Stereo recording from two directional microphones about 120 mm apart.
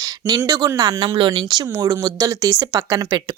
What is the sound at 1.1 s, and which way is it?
Speech, 45° right (ahead or behind).